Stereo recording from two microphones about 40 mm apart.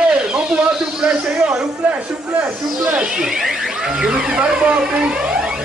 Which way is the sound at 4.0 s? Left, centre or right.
Right.